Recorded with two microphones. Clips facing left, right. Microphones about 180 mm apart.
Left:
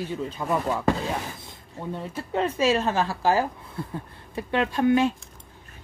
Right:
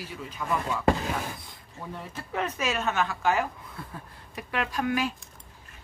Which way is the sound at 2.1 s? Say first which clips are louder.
Left 5 dB; 30° left (ahead or behind).